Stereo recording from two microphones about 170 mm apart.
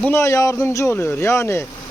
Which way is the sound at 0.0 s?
15° left (ahead or behind).